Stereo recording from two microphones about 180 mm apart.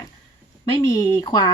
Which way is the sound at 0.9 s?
15° left (ahead or behind).